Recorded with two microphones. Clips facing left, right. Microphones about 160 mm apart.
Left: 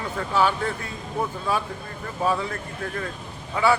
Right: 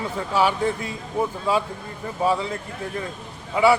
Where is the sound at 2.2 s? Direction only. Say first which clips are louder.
Right 2 dB; 15° right (ahead or behind).